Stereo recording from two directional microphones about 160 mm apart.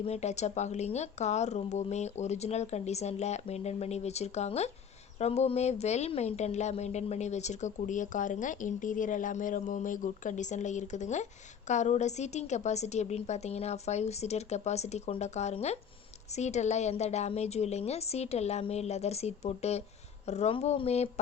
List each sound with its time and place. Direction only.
0.0 s a woman's voice: 40° left (ahead or behind)